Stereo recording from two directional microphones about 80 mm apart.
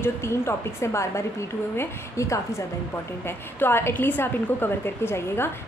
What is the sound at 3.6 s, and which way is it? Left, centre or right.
A woman's voice, left.